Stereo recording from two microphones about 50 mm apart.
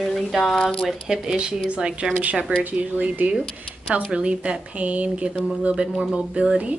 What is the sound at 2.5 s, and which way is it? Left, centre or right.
Speech, right.